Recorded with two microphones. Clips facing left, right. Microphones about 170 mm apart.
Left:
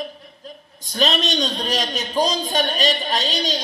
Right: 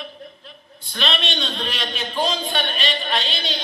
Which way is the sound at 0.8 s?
40° left (ahead or behind).